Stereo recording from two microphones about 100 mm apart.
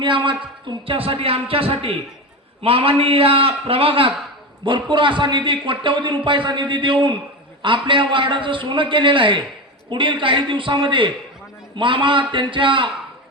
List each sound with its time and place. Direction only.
0.0 s a man's voice: 55° right (ahead or behind)
0.9 s a man's voice: 65° right (ahead or behind)
4.6 s a man's voice: 55° right (ahead or behind)